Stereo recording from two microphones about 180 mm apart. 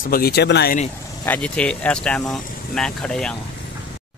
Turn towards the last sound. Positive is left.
turn(degrees=5)  # may be behind; listen again after turning